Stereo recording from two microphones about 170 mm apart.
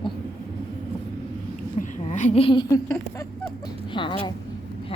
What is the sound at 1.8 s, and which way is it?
A woman's voice, 45° left (ahead or behind).